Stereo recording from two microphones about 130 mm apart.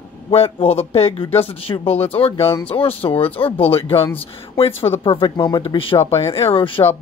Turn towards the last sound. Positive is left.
turn(degrees=40)  # may be behind; listen again after turning